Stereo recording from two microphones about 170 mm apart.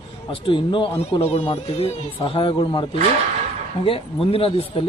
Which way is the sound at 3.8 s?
35° left (ahead or behind).